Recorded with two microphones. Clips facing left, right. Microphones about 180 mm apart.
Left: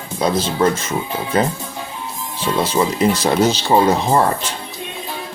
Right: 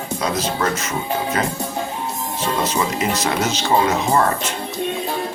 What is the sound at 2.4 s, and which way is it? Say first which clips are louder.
Speech: left 4 dB; 30° left (ahead or behind).